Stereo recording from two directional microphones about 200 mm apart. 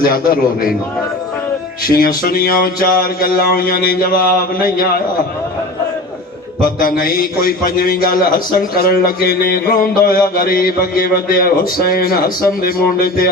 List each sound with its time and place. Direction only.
0.0 s a man's voice: 45° left (ahead or behind)
2.2 s a man's voice: 45° left (ahead or behind)
6.6 s a man's voice: 45° left (ahead or behind)